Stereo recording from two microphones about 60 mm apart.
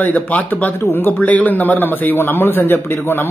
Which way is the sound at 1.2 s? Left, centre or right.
Left.